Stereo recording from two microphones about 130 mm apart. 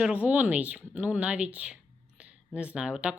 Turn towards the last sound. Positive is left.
turn(degrees=-10)  # may be behind; listen again after turning